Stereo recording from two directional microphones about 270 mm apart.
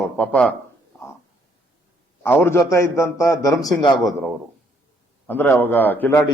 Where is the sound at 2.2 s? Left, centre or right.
Centre.